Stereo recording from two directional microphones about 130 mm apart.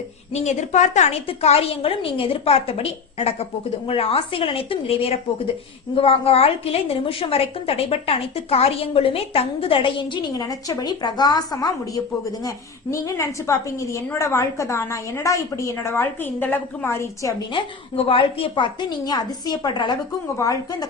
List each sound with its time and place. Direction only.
0.3 s a woman's voice: 65° left (ahead or behind)
1.3 s a woman's voice: 50° left (ahead or behind); by 17.3 s 20° left (ahead or behind)
17.5 s a woman's voice: 45° left (ahead or behind); by 20.8 s 25° left (ahead or behind)